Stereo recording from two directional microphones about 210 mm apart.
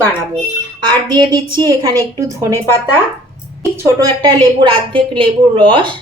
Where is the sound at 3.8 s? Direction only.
15° right (ahead or behind).